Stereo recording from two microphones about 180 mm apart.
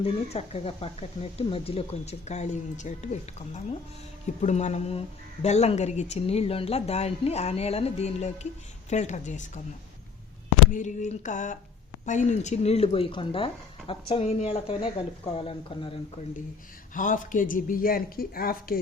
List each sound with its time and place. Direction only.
0.0 s speech: 35° left (ahead or behind)
10.7 s speech: 45° left (ahead or behind)
16.9 s speech: 45° left (ahead or behind)